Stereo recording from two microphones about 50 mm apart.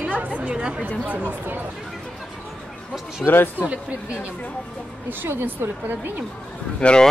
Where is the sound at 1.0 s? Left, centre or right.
Right.